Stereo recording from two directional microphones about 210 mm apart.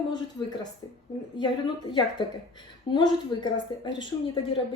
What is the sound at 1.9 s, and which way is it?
A woman's voice, 20° left (ahead or behind).